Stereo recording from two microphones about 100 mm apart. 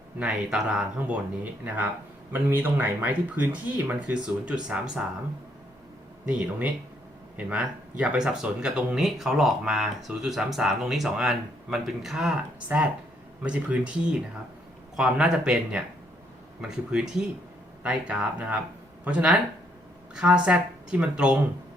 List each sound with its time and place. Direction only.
0.2 s speech: 10° right (ahead or behind)
6.2 s speech: 15° right (ahead or behind)